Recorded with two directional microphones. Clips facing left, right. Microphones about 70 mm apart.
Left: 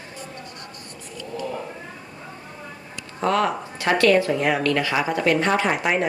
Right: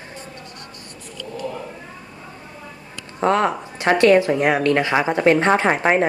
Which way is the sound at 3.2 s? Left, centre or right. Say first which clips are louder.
Right 3 dB; right.